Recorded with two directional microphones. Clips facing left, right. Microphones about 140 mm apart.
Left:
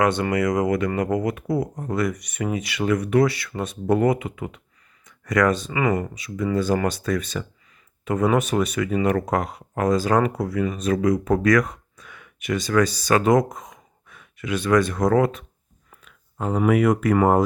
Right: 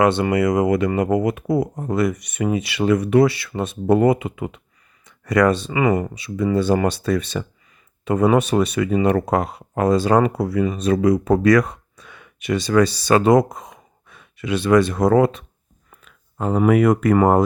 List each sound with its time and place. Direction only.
0.0 s speech: 25° right (ahead or behind)
5.7 s speech: 15° right (ahead or behind)
6.1 s speech: 30° right (ahead or behind)
16.0 s speech: 40° right (ahead or behind)